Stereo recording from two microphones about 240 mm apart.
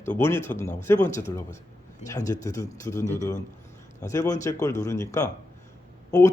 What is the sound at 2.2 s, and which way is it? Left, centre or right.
Speech, centre.